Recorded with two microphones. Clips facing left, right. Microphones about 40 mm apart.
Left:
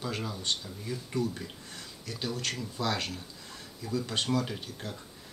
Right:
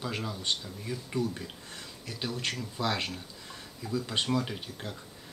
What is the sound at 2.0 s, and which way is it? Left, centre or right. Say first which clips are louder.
Speech: even; centre.